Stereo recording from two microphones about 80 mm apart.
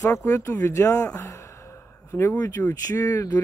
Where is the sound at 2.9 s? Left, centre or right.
Left.